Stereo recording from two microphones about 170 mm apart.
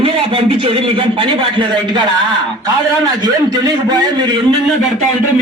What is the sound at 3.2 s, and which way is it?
A man's voice, 25° right (ahead or behind).